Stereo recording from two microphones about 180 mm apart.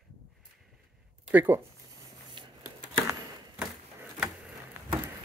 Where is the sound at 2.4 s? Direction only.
25° right (ahead or behind).